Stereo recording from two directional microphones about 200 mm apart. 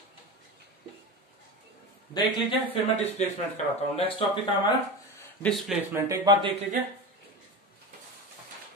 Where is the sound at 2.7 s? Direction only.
30° left (ahead or behind).